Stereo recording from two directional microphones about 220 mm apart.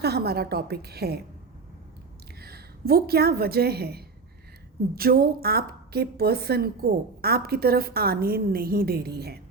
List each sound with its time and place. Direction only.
0.0 s a woman's voice: 45° right (ahead or behind)
2.4 s a woman's voice: 45° right (ahead or behind)